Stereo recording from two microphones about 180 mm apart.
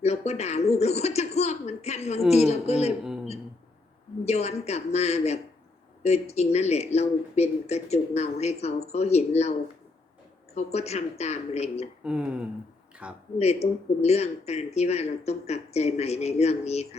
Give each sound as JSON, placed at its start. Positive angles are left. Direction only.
{"t": 0.0, "sound": "speech", "side_deg": 35}
{"t": 4.3, "sound": "speech", "side_deg": 35}
{"t": 12.0, "sound": "speech", "side_deg": -5}
{"t": 13.4, "sound": "speech", "side_deg": 35}